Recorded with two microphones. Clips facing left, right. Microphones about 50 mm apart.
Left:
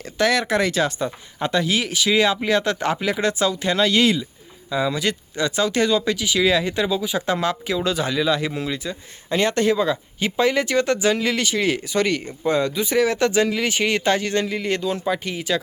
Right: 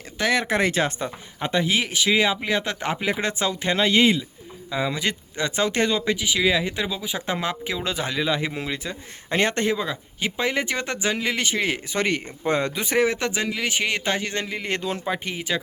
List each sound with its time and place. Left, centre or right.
0.2 s speech: centre
1.4 s speech: centre; by 9.6 s right
9.6 s speech: centre; by 13.1 s right
13.1 s speech: centre
14.7 s speech: right
15.0 s speech: right